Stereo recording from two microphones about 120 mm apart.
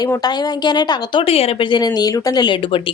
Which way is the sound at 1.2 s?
55° left (ahead or behind).